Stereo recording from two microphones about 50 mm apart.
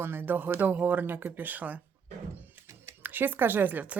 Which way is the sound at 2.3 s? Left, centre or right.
Right.